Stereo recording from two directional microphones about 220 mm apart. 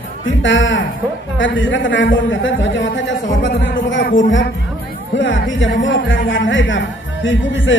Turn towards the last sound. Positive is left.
turn(degrees=55)  # may be behind; listen again after turning